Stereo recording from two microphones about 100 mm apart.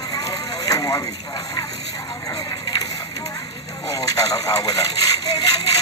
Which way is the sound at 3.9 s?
35° left (ahead or behind).